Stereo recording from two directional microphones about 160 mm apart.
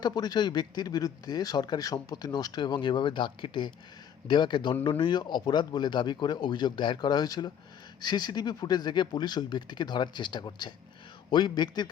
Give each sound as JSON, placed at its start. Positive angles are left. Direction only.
{"t": 0.0, "sound": "speech", "side_deg": 25}